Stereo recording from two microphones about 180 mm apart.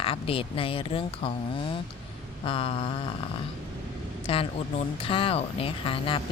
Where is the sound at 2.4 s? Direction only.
30° left (ahead or behind).